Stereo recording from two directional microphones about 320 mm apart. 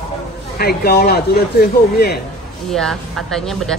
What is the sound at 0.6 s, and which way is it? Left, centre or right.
Speech, left.